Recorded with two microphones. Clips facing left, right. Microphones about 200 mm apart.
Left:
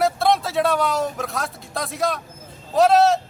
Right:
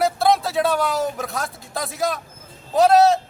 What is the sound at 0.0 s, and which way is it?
A man's voice, centre (ahead or behind).